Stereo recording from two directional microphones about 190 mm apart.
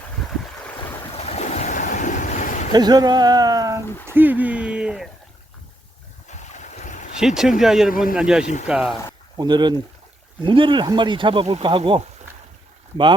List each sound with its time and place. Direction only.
1.1 s waves: 35° left (ahead or behind)
2.7 s speech: 20° right (ahead or behind); by 5.0 s 5° right (ahead or behind)
6.2 s boat: 40° left (ahead or behind)
7.2 s speech: 5° right (ahead or behind)
9.4 s speech: 25° right (ahead or behind)